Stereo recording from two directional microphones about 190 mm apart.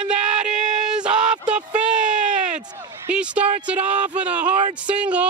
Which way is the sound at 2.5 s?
40° right (ahead or behind).